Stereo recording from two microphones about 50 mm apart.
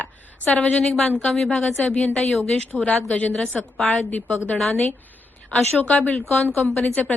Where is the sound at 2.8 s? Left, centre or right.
Left.